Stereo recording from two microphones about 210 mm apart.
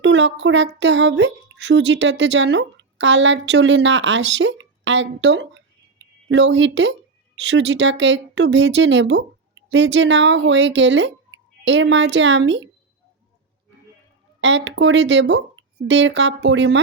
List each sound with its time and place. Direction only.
0.0 s speech: 60° right (ahead or behind)
14.4 s speech: 60° right (ahead or behind)